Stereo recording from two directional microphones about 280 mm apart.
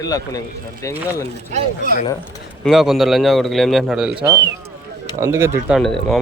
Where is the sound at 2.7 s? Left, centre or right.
Centre.